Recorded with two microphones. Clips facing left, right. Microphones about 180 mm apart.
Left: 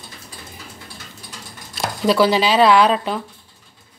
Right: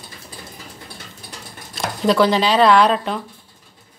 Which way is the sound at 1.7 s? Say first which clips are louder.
Even; 5° left (ahead or behind).